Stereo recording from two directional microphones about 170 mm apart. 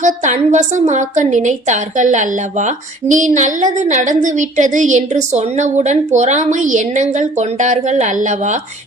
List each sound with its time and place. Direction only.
0.0 s a woman's voice: 45° right (ahead or behind)